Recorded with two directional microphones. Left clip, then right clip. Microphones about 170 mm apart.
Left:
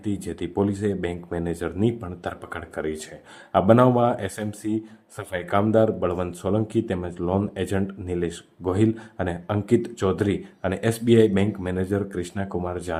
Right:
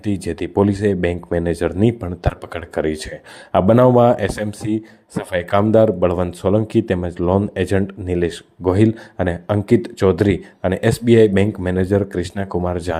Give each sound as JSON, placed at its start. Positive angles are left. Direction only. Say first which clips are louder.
{"t": 0.0, "sound": "speech", "louder": "right 7 dB", "side_deg": -40}